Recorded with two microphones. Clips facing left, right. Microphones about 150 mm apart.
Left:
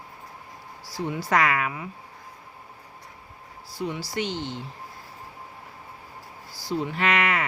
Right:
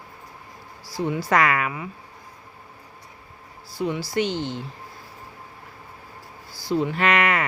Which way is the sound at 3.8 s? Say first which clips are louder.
Right 4 dB; 90° right.